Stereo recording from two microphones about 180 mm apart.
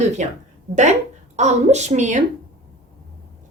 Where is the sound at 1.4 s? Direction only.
40° right (ahead or behind).